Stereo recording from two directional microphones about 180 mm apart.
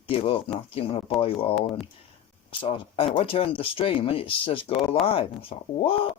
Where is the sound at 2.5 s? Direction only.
30° left (ahead or behind).